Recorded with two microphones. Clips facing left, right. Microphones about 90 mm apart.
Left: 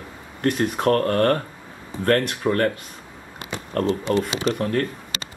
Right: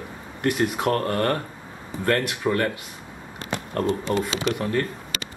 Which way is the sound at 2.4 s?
Centre (ahead or behind).